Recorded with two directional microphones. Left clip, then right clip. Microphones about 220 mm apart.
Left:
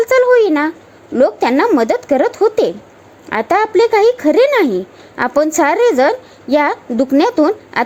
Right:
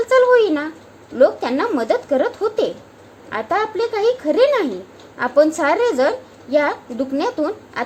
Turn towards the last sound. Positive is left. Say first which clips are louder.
# left 9 dB
turn(degrees=35)  # may be behind; listen again after turning